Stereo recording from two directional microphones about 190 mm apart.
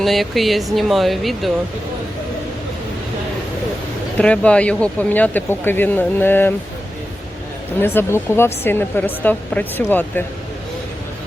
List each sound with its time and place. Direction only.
0.0 s speech: centre (ahead or behind)
4.2 s speech: 5° left (ahead or behind)
7.8 s speech: 10° left (ahead or behind)